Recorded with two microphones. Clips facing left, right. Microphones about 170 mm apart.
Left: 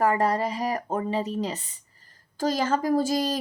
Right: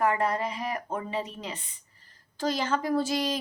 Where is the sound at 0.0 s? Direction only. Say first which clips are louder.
Left 3 dB; 40° left (ahead or behind).